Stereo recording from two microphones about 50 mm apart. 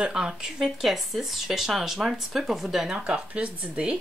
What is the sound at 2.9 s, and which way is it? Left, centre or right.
Speech, centre.